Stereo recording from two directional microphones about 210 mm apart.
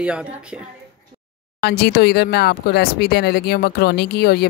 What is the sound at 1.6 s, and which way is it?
Speech, 50° left (ahead or behind).